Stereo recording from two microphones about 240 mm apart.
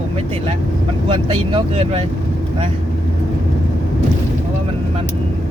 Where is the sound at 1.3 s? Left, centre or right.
Right.